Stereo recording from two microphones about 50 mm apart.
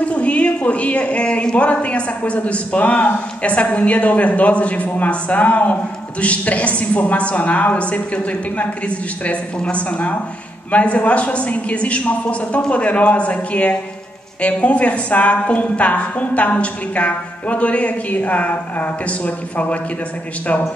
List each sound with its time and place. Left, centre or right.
0.0 s a woman's voice: left